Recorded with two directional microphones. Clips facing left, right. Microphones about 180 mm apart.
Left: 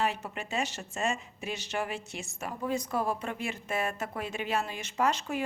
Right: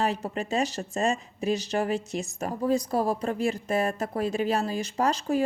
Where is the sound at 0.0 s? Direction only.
35° right (ahead or behind).